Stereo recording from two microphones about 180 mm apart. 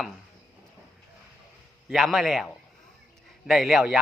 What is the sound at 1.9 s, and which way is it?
A man's voice, centre (ahead or behind).